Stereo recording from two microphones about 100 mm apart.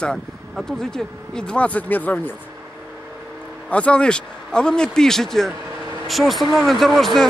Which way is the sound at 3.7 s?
10° left (ahead or behind).